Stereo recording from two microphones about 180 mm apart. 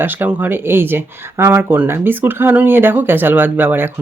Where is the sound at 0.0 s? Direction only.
10° right (ahead or behind).